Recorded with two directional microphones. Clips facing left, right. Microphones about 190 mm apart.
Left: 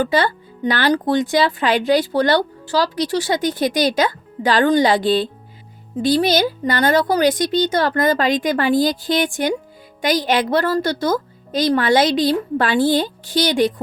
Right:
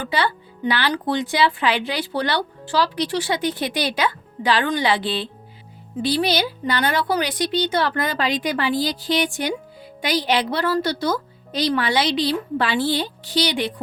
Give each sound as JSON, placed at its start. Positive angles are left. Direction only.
{"t": 0.0, "sound": "speech", "side_deg": 45}